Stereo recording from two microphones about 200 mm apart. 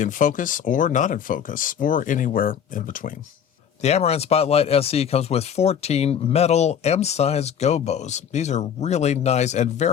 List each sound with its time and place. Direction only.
0.0 s speech: 40° left (ahead or behind)
3.8 s speech: 30° left (ahead or behind)